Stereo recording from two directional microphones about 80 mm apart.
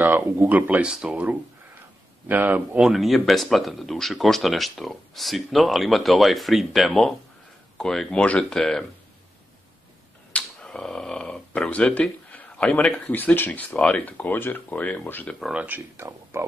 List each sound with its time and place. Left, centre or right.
0.5 s speech: centre
2.8 s speech: centre
10.3 s a sound: centre
13.1 s speech: left
15.5 s speech: centre
16.0 s speech: right